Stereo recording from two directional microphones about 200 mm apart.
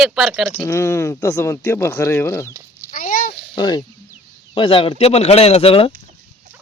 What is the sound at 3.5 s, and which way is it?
Speech, 20° left (ahead or behind).